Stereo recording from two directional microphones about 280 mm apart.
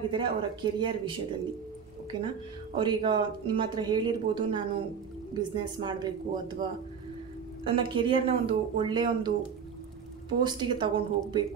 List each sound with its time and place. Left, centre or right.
0.1 s speech: centre
7.6 s speech: centre
10.4 s speech: centre